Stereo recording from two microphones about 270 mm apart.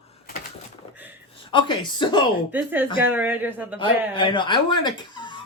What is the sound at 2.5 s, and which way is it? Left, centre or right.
Speech, centre.